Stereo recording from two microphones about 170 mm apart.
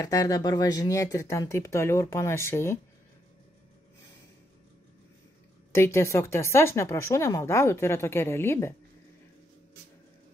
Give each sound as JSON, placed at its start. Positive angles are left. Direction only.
{"t": 0.0, "sound": "speech", "side_deg": 20}
{"t": 5.7, "sound": "speech", "side_deg": 15}